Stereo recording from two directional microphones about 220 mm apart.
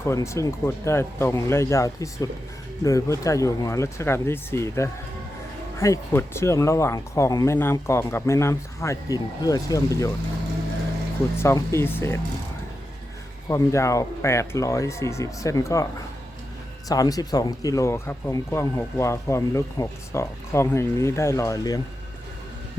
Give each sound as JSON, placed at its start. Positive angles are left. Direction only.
{"t": 0.0, "sound": "speech", "side_deg": 15}
{"t": 11.3, "sound": "speech", "side_deg": 10}
{"t": 13.5, "sound": "speech", "side_deg": 15}
{"t": 16.9, "sound": "speech", "side_deg": 15}